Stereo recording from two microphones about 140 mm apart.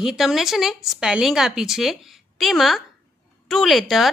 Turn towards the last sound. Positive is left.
turn(degrees=0)  # may be behind; listen again after turning